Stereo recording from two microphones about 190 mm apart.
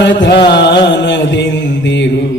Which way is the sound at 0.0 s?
70° left (ahead or behind).